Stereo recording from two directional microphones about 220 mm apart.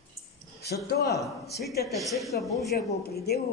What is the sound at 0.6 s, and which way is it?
Speech, 50° left (ahead or behind).